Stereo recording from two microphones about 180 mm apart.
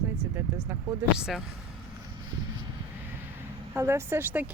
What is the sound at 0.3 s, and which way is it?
Speech, 15° right (ahead or behind).